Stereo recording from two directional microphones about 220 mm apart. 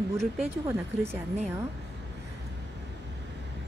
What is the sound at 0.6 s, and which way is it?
Speech, 10° right (ahead or behind).